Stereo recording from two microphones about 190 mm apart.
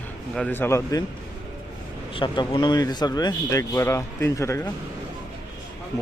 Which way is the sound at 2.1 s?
25° left (ahead or behind).